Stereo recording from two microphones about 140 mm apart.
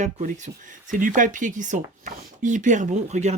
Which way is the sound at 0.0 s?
60° right (ahead or behind).